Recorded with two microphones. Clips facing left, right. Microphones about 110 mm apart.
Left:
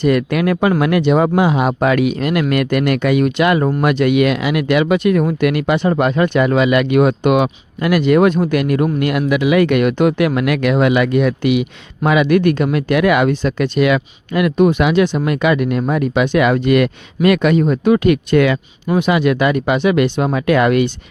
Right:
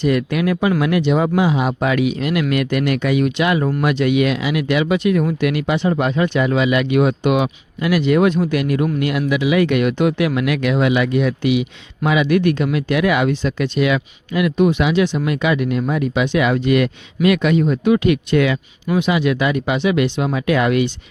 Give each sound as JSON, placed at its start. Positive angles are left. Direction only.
{"t": 0.0, "sound": "speech", "side_deg": 55}